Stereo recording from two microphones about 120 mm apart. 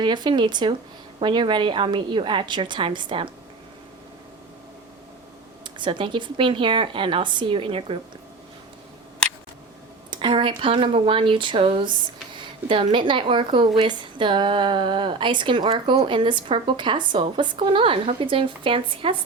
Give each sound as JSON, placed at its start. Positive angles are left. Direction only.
{"t": 0.0, "sound": "a woman's voice", "side_deg": -40}
{"t": 5.6, "sound": "a woman's voice", "side_deg": -40}
{"t": 10.1, "sound": "a woman's voice", "side_deg": -45}